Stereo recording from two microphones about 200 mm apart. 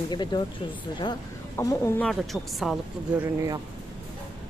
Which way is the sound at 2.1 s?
Centre (ahead or behind).